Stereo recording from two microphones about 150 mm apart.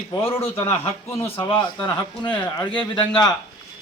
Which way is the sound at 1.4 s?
35° left (ahead or behind).